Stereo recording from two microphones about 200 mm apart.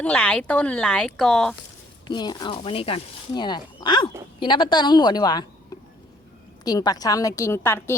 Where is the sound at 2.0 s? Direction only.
20° left (ahead or behind).